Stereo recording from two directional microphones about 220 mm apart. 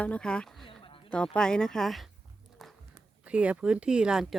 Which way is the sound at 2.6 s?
Centre (ahead or behind).